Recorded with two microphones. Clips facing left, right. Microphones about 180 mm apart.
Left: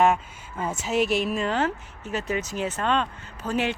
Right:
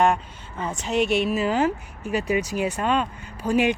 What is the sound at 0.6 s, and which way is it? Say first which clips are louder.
A woman's voice: right 1 dB; 5° left (ahead or behind).